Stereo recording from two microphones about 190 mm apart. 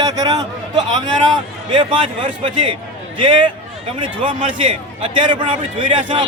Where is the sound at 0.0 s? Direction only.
20° right (ahead or behind).